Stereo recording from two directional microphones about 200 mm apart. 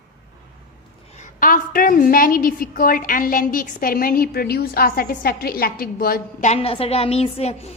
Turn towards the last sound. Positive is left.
turn(degrees=30)  # may be behind; listen again after turning